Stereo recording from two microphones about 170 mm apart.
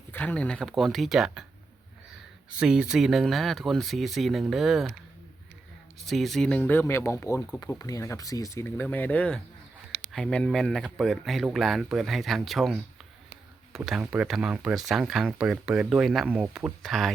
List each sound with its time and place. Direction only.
0.1 s speech: 10° left (ahead or behind)
2.6 s speech: 5° right (ahead or behind)
6.1 s speech: centre (ahead or behind)